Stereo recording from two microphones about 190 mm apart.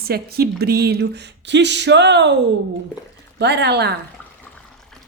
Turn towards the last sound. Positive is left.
turn(degrees=-60)  # may be behind; listen again after turning